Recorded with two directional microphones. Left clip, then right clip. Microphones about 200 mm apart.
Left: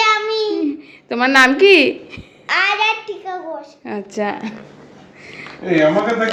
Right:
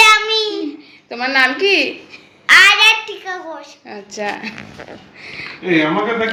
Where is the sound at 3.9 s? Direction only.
40° left (ahead or behind).